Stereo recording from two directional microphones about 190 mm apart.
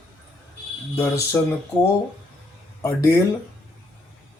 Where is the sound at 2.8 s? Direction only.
15° left (ahead or behind).